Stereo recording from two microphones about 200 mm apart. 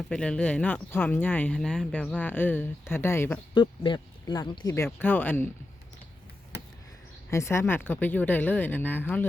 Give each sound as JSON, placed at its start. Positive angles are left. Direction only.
{"t": 0.1, "sound": "speech", "side_deg": 5}
{"t": 3.5, "sound": "speech", "side_deg": 25}
{"t": 4.7, "sound": "speech", "side_deg": 10}
{"t": 7.3, "sound": "speech", "side_deg": 15}